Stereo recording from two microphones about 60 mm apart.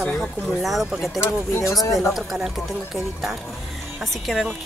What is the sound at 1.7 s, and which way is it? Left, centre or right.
Speech, left.